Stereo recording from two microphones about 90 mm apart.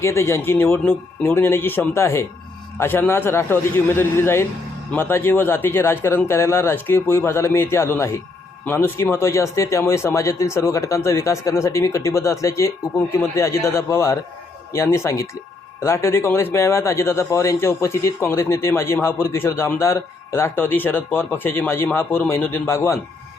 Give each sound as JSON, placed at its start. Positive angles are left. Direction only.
{"t": 0.0, "sound": "a man's voice", "side_deg": 30}